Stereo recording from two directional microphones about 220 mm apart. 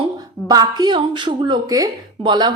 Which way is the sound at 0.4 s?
15° right (ahead or behind).